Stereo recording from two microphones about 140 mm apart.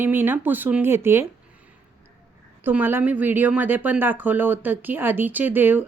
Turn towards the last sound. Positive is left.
turn(degrees=-15)  # may be behind; listen again after turning